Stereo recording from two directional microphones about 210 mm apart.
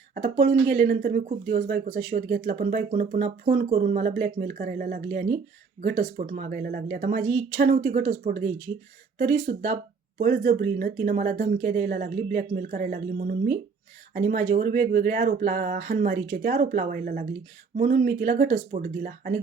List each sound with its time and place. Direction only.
0.1 s speech: 45° right (ahead or behind)